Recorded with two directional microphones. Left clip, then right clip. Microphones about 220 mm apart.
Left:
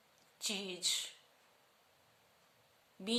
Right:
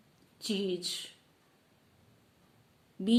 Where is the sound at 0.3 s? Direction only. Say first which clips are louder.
Right 7 dB; 20° left (ahead or behind).